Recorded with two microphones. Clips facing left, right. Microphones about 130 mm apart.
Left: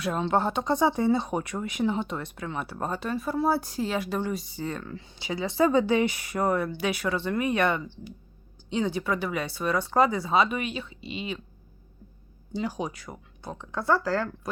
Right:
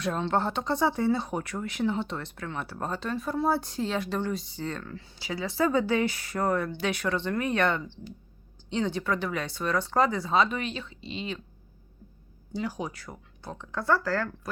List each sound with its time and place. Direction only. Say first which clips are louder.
0.0 s speech: left 2 dB; 10° left (ahead or behind)
12.5 s speech: left 2 dB; 20° left (ahead or behind)